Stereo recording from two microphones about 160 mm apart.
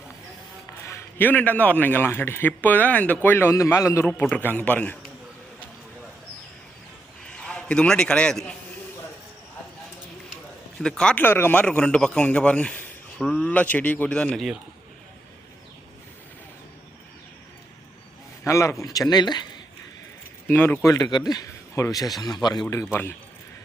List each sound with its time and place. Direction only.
0.9 s a man's voice: 15° left (ahead or behind)
7.3 s a man's voice: 5° left (ahead or behind)
10.8 s a man's voice: 5° left (ahead or behind)
18.4 s speech: 20° left (ahead or behind)
20.5 s a man's voice: 15° left (ahead or behind)